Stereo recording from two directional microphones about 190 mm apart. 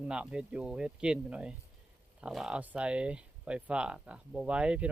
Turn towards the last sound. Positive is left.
turn(degrees=-5)  # may be behind; listen again after turning